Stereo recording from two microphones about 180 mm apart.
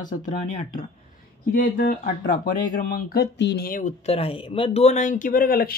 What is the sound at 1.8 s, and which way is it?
Speech, 55° left (ahead or behind).